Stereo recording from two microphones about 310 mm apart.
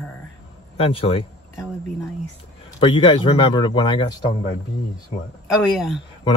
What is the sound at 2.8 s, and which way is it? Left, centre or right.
Speech, centre.